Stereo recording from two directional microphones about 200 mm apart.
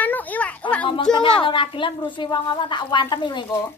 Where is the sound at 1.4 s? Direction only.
25° left (ahead or behind).